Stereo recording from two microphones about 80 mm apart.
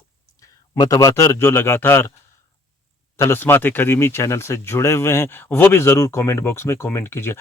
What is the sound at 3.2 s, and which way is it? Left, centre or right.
Speech, left.